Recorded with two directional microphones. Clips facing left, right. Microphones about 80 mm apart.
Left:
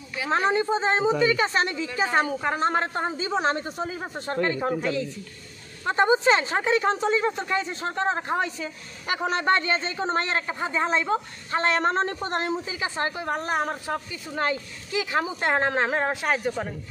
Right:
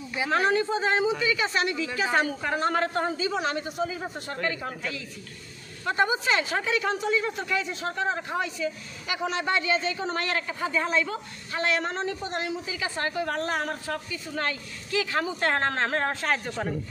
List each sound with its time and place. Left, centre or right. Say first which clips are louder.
0.3 s a woman's voice: left 2 dB; left
12.6 s a woman's voice: left 2 dB; left; by 16.7 s centre